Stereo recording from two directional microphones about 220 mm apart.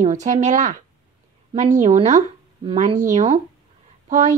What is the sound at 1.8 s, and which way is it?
Speech, 30° right (ahead or behind).